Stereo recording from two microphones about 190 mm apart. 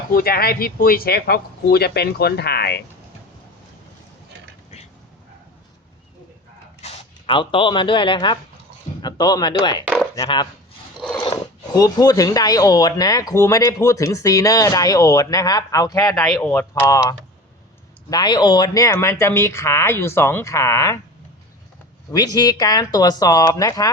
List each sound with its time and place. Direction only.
0.1 s speech: 50° left (ahead or behind)
6.8 s speech: 30° left (ahead or behind)
16.1 s speech: centre (ahead or behind)
22.4 s speech: 20° left (ahead or behind)